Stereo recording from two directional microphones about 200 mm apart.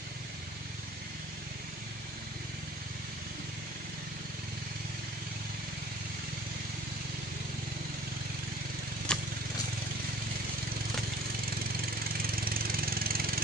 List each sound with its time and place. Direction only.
9.1 s vehicle: 5° left (ahead or behind)
12.4 s engine: 50° right (ahead or behind)